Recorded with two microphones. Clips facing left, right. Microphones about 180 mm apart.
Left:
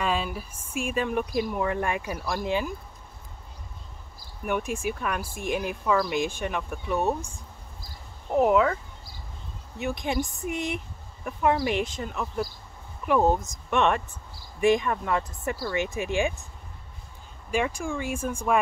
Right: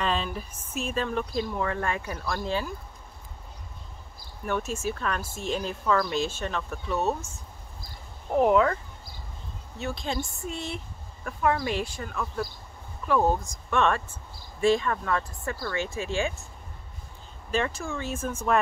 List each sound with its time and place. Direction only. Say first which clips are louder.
0.0 s speech: left 1 dB; 10° left (ahead or behind)
4.5 s speech: left 1 dB; 15° left (ahead or behind)
8.3 s speech: even; 5° left (ahead or behind)
9.8 s speech: left 3 dB; 15° left (ahead or behind)
17.5 s speech: left 1 dB; 10° left (ahead or behind)